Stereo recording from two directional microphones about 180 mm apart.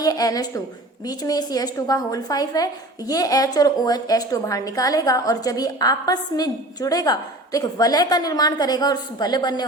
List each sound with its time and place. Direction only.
0.0 s a woman's voice: 20° left (ahead or behind)